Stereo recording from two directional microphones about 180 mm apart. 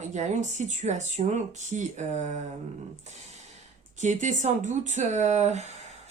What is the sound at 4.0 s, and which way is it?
Speech, 40° right (ahead or behind).